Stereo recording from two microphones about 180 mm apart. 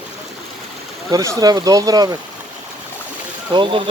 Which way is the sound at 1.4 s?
20° right (ahead or behind).